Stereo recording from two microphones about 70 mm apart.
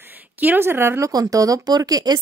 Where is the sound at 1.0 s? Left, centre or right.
Right.